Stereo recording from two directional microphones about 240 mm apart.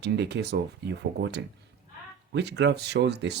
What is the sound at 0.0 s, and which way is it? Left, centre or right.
Speech, right.